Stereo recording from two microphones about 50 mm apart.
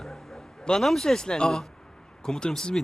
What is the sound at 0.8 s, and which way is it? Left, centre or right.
Speech, centre.